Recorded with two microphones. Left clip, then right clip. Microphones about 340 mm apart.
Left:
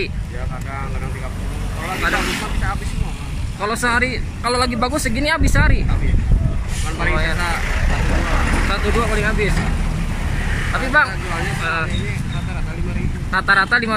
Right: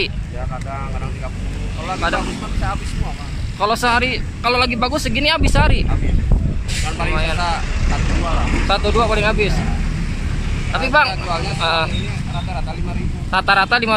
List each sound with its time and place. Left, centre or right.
3.6 s speech: centre
7.0 s speech: centre
8.6 s speech: centre
10.7 s speech: centre
13.3 s speech: centre